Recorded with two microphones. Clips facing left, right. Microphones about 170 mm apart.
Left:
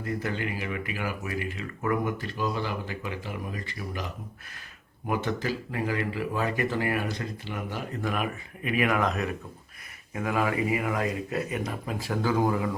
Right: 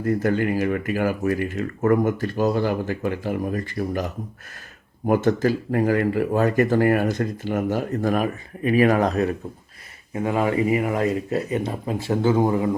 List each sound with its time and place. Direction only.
0.0 s speech: 50° right (ahead or behind); by 12.7 s 25° right (ahead or behind)